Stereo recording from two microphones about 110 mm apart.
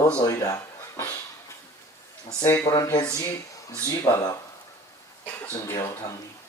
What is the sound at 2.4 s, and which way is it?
Speech, 30° left (ahead or behind).